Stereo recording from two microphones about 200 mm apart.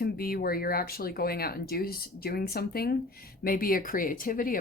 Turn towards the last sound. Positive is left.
turn(degrees=45)  # may be behind; listen again after turning